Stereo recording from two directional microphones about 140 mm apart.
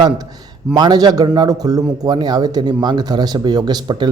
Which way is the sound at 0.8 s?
30° right (ahead or behind).